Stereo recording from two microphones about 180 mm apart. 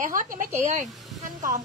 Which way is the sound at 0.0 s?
45° right (ahead or behind).